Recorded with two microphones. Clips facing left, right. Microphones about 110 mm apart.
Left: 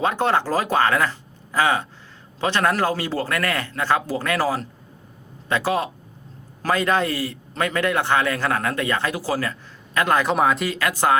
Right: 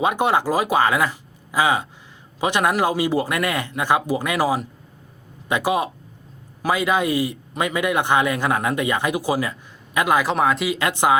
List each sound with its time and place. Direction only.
0.0 s speech: 15° right (ahead or behind)
10.8 s speech: 20° right (ahead or behind)